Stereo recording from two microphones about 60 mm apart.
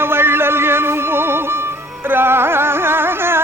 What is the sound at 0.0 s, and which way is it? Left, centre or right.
Music, right.